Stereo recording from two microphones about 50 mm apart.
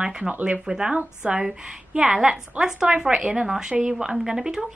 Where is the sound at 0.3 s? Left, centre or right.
Right.